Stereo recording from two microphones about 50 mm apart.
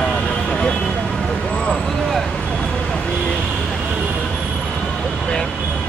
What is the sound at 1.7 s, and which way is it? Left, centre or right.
Vehicle, centre.